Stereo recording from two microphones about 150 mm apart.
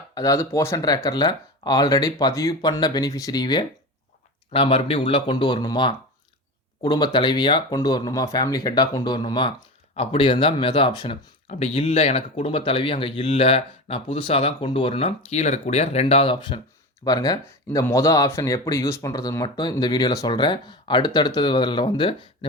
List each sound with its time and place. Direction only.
0.1 s speech: 25° left (ahead or behind)
9.9 s speech: 45° left (ahead or behind)
11.7 s speech: 45° left (ahead or behind)